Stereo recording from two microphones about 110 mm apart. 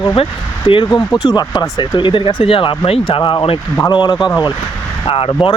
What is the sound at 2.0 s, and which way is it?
Speech, 50° left (ahead or behind).